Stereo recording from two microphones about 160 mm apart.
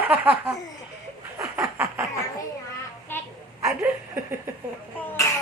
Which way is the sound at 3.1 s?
15° left (ahead or behind).